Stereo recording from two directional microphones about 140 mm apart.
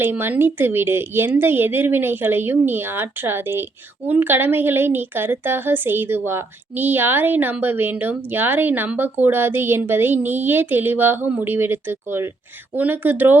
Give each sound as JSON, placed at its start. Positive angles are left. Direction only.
{"t": 0.0, "sound": "a woman's voice", "side_deg": -15}